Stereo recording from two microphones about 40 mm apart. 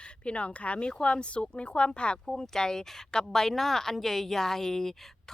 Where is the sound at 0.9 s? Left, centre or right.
Left.